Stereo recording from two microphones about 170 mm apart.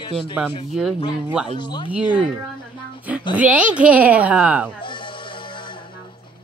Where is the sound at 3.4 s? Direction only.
10° right (ahead or behind).